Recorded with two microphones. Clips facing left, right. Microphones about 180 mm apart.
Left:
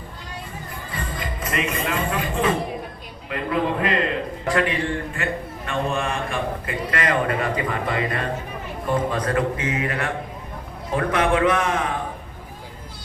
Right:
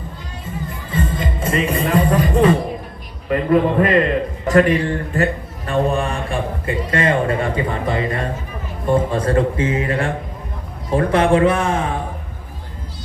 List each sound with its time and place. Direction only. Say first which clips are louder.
0.9 s music: right 9 dB; 25° right (ahead or behind)
3.2 s a man's voice: right 8 dB; 45° right (ahead or behind); by 11.9 s 30° right (ahead or behind)